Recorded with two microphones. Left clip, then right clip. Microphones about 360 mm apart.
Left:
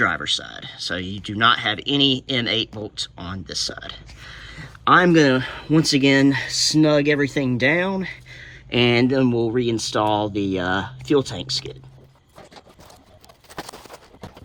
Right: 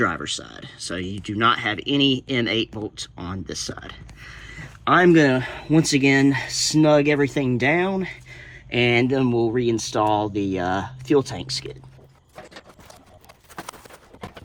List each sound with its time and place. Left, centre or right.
0.0 s speech: centre
13.6 s clip-clop: left